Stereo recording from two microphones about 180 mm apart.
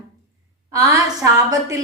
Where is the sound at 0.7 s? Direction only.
15° right (ahead or behind).